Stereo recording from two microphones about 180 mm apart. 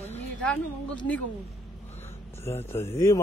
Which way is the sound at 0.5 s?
5° left (ahead or behind).